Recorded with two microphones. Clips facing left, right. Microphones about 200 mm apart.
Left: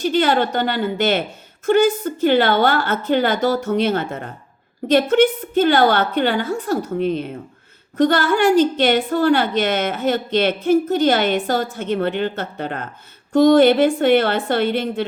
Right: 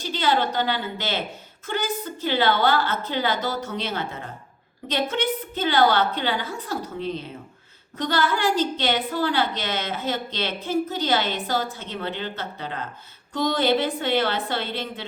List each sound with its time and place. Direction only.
0.0 s a woman's voice: 55° left (ahead or behind)